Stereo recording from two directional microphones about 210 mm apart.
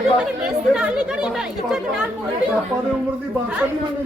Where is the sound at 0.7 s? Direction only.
5° right (ahead or behind).